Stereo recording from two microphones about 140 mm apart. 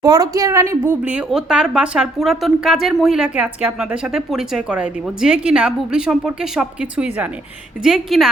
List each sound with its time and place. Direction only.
0.0 s a woman's voice: 25° right (ahead or behind); by 8.3 s 5° right (ahead or behind)